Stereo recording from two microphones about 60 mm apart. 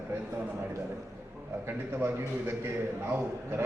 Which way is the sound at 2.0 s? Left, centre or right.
Right.